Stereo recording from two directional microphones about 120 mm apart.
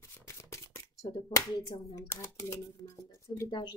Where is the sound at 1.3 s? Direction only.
25° left (ahead or behind).